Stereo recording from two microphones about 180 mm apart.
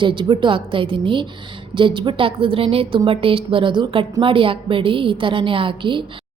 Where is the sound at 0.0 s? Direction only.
25° right (ahead or behind).